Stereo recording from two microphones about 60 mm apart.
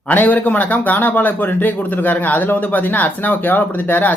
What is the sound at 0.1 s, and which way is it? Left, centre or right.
Speech, left.